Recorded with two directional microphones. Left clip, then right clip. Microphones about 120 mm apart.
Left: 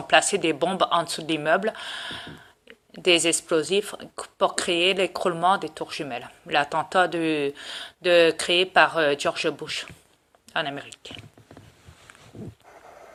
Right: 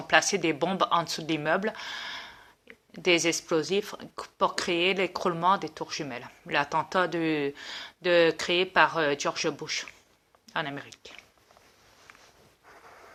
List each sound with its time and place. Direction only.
0.1 s speech: 35° right (ahead or behind)